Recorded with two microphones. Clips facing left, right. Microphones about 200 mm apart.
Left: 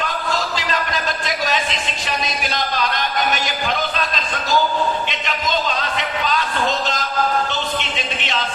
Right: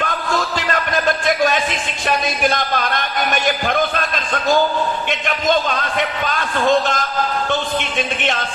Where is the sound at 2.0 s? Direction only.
55° right (ahead or behind).